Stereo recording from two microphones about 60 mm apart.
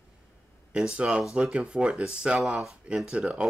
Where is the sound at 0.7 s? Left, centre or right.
Centre.